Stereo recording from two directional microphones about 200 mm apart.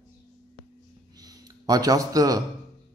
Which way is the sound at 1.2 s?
20° right (ahead or behind).